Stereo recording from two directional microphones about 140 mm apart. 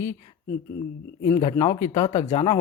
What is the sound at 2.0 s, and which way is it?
Speech, 55° left (ahead or behind).